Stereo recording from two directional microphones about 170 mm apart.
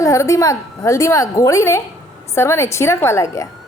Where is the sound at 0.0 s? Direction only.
20° left (ahead or behind).